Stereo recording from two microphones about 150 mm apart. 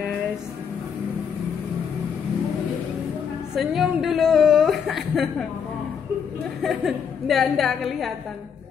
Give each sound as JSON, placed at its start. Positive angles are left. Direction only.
{"t": 3.5, "sound": "speech", "side_deg": 0}
{"t": 6.6, "sound": "a woman's voice", "side_deg": 0}